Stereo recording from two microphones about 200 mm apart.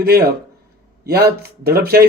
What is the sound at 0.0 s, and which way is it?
Speech, 50° right (ahead or behind).